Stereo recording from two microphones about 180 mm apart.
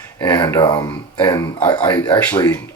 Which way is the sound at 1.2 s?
10° left (ahead or behind).